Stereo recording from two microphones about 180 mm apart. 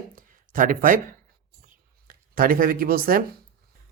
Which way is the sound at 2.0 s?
50° right (ahead or behind).